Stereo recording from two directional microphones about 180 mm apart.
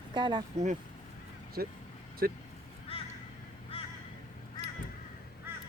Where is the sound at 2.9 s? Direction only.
30° left (ahead or behind).